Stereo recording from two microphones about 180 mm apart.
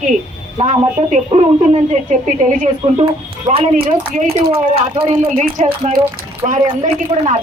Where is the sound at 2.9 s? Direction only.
30° right (ahead or behind).